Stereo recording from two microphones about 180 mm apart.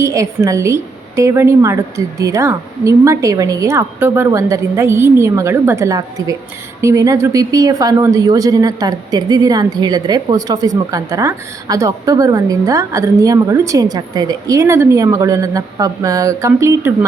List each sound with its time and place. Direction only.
0.0 s a woman's voice: 15° right (ahead or behind)